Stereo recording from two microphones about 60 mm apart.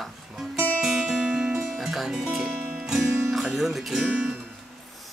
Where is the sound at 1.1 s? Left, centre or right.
Centre.